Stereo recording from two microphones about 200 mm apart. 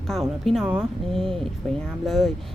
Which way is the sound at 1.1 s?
25° right (ahead or behind).